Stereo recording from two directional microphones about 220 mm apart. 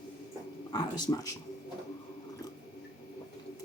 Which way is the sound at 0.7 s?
20° left (ahead or behind).